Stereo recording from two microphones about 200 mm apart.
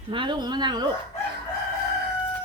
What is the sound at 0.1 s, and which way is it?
Speech, 25° right (ahead or behind).